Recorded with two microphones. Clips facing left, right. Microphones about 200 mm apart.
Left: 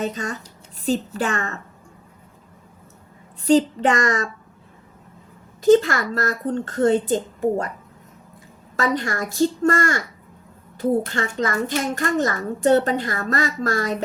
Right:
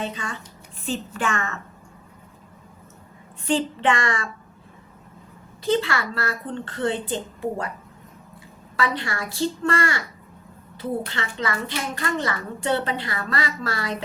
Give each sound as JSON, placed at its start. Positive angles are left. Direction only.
{"t": 0.0, "sound": "a child's voice", "side_deg": 45}
{"t": 3.4, "sound": "a woman's voice", "side_deg": 40}
{"t": 5.6, "sound": "a child's voice", "side_deg": 45}
{"t": 8.7, "sound": "a child's voice", "side_deg": 45}